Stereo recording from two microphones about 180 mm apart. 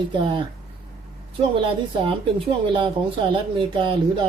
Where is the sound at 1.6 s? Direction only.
25° right (ahead or behind).